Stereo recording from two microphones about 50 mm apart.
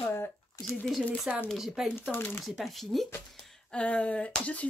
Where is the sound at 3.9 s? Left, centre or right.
Left.